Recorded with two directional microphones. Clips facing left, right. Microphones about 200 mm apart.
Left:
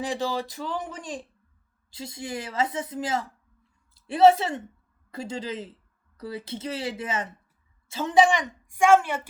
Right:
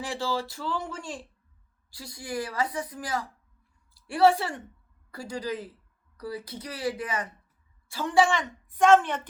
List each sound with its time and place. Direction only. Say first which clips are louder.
0.0 s a woman's voice: left 2 dB; 20° left (ahead or behind)